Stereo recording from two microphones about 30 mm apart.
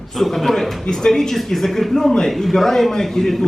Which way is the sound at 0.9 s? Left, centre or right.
Centre.